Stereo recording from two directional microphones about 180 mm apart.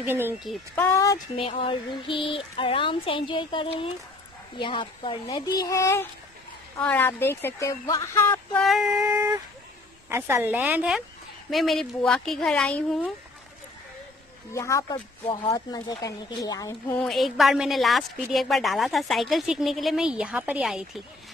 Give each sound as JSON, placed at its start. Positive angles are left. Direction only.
{"t": 0.0, "sound": "a woman's voice", "side_deg": -10}
{"t": 0.7, "sound": "speech", "side_deg": 15}
{"t": 1.3, "sound": "a woman's voice", "side_deg": 30}
{"t": 8.6, "sound": "a woman's voice", "side_deg": 0}
{"t": 10.0, "sound": "a woman's voice", "side_deg": -15}
{"t": 14.5, "sound": "a woman's voice", "side_deg": 15}
{"t": 16.9, "sound": "a woman's voice", "side_deg": 0}